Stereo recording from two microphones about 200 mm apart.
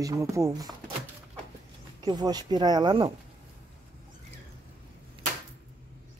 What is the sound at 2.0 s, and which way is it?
Speech, 20° right (ahead or behind).